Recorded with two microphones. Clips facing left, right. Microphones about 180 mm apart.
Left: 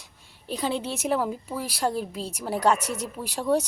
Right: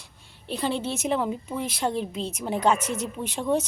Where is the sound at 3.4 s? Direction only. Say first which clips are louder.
Left 1 dB; 10° left (ahead or behind).